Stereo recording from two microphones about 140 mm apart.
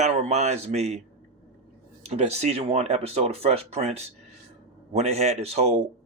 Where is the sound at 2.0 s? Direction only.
50° right (ahead or behind).